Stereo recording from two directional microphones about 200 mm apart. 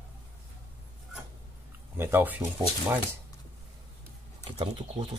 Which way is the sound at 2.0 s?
10° right (ahead or behind).